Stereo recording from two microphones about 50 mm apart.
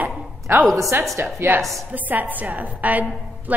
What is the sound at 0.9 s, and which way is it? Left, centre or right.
Speech, right.